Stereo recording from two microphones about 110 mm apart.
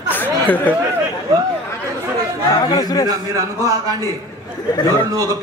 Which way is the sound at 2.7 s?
35° left (ahead or behind).